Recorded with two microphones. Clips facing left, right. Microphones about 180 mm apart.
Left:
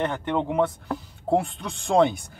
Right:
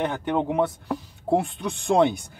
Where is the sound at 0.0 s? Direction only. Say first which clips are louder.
Right 1 dB; 10° right (ahead or behind).